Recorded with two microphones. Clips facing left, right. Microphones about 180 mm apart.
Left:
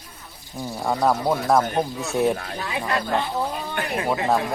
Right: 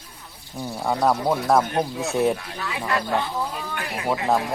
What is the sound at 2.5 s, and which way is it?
Speech, 30° left (ahead or behind).